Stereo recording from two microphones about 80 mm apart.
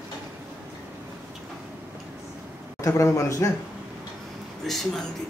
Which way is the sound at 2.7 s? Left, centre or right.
Left.